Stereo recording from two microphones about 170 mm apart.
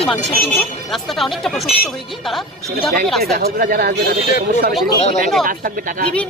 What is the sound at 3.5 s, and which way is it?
Speech, 65° right (ahead or behind).